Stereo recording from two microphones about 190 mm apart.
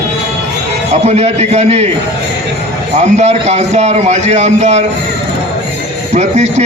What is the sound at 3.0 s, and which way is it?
A man's voice, 35° right (ahead or behind).